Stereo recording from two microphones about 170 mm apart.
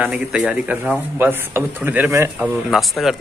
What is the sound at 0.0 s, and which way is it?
Speech, 5° right (ahead or behind).